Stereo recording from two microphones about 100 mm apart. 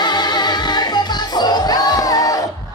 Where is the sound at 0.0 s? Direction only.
45° left (ahead or behind).